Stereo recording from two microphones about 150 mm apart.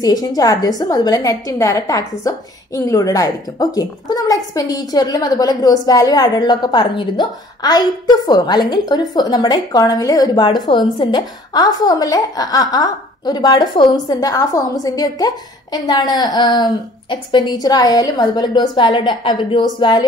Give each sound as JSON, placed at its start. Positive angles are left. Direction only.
{"t": 0.0, "sound": "a woman's voice", "side_deg": 25}